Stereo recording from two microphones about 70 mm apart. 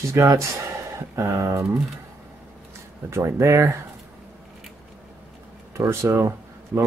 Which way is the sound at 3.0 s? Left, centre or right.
Right.